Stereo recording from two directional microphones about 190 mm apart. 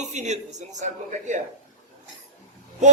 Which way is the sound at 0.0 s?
40° right (ahead or behind).